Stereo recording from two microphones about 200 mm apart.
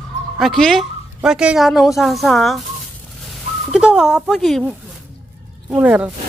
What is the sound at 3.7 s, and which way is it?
Speech, 5° right (ahead or behind).